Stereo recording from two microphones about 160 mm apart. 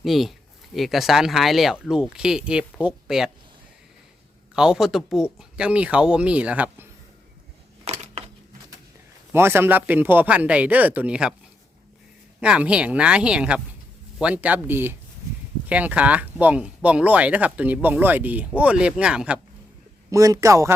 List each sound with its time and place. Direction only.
0.0 s speech: centre (ahead or behind)
4.5 s speech: 5° right (ahead or behind)
7.9 s a sound: 40° right (ahead or behind)
9.3 s speech: 15° right (ahead or behind)
12.4 s speech: 5° right (ahead or behind)
20.1 s a man's voice: 20° right (ahead or behind)